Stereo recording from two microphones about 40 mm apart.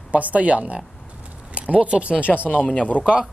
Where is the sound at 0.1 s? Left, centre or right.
Right.